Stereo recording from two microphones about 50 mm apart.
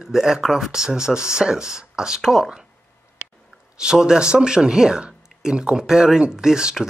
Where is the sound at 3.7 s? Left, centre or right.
Centre.